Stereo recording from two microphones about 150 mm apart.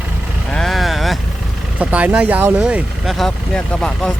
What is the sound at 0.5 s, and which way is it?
Vehicle, centre (ahead or behind).